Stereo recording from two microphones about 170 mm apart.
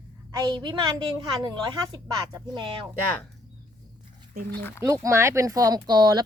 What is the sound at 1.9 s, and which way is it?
Speech, 25° right (ahead or behind).